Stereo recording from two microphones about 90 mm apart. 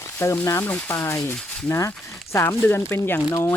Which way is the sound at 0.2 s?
30° left (ahead or behind).